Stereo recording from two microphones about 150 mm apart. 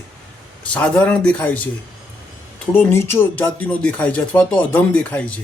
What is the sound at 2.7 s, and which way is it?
Speech, 15° left (ahead or behind).